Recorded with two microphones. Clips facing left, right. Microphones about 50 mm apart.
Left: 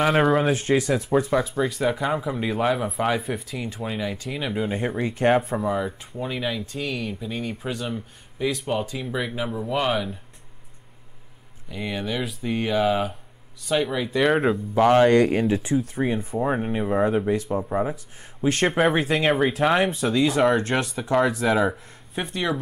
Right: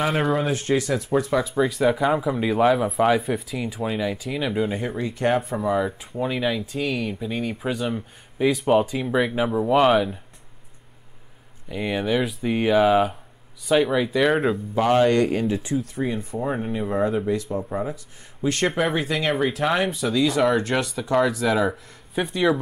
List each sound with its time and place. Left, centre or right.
0.2 s speech: centre
4.8 s speech: centre
5.3 s speech: centre
9.8 s speech: centre
11.7 s speech: centre
15.0 s speech: left
16.2 s speech: centre
18.7 s speech: centre
18.9 s speech: centre
19.6 s speech: centre